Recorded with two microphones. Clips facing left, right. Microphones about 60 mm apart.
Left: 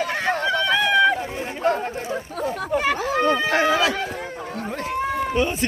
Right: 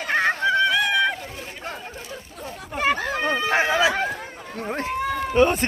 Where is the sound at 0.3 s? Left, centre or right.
Left.